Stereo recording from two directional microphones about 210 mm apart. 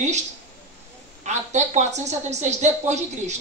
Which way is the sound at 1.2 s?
35° right (ahead or behind).